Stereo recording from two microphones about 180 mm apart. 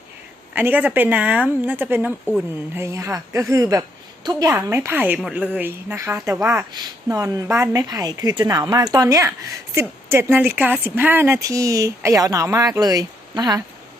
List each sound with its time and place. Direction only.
0.5 s speech: 10° right (ahead or behind)